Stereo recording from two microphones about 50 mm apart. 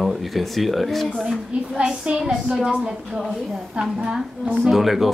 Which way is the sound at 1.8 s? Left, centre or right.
Centre.